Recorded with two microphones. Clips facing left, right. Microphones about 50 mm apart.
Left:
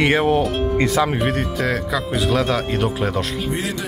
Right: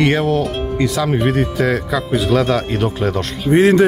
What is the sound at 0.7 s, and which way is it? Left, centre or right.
Speech, left.